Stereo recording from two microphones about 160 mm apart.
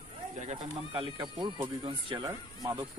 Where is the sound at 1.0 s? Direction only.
30° right (ahead or behind).